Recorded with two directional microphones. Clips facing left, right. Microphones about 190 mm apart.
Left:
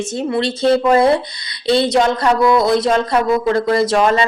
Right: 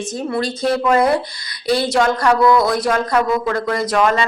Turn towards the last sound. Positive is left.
turn(degrees=25)  # may be behind; listen again after turning